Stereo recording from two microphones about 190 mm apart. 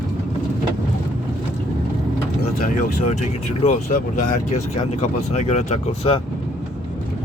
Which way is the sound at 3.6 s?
40° left (ahead or behind).